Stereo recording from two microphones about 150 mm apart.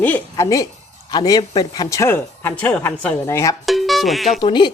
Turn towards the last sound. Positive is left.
turn(degrees=30)  # may be behind; listen again after turning